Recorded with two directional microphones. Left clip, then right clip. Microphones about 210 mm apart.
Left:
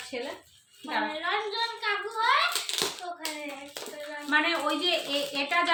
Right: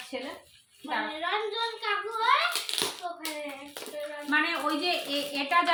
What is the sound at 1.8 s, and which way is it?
Speech, 15° left (ahead or behind).